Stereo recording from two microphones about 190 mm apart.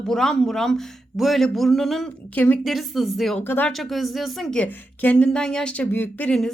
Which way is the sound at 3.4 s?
10° left (ahead or behind).